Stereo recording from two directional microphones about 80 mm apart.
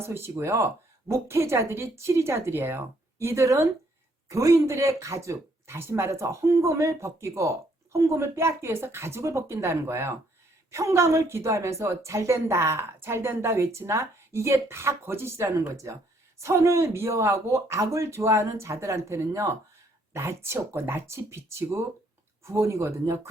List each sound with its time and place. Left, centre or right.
0.0 s a woman's voice: right